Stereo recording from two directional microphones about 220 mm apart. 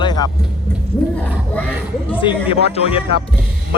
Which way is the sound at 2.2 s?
25° left (ahead or behind).